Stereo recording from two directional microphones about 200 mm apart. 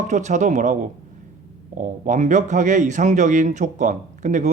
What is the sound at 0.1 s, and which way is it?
A man's voice, 35° right (ahead or behind).